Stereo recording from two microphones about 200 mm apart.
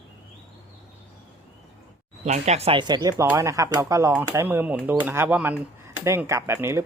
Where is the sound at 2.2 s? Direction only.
35° right (ahead or behind); by 6.8 s 10° right (ahead or behind).